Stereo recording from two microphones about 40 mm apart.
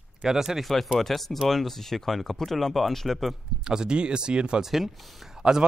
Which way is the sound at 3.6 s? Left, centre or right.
Centre.